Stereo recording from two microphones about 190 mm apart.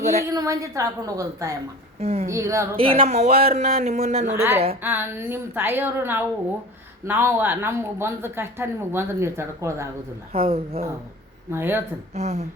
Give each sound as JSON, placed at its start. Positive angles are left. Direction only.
{"t": 0.3, "sound": "speech", "side_deg": -15}
{"t": 2.0, "sound": "speech", "side_deg": -35}
{"t": 2.2, "sound": "speech", "side_deg": -15}
{"t": 2.7, "sound": "speech", "side_deg": -30}
{"t": 4.4, "sound": "speech", "side_deg": -10}
{"t": 10.3, "sound": "speech", "side_deg": -30}
{"t": 11.5, "sound": "speech", "side_deg": -10}
{"t": 12.1, "sound": "speech", "side_deg": -35}